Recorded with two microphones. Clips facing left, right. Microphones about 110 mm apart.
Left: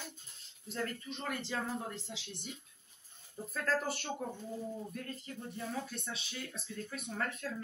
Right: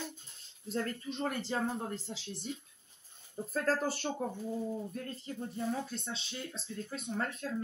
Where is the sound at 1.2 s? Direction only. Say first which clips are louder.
Right 4 dB; 35° right (ahead or behind).